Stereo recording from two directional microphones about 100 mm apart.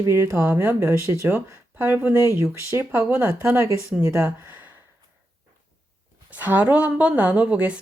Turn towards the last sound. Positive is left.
turn(degrees=-15)  # may be behind; listen again after turning